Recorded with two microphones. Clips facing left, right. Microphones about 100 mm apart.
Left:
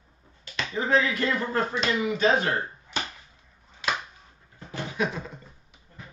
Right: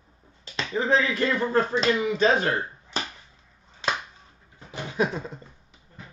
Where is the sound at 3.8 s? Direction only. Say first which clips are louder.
Right 1 dB; 30° right (ahead or behind).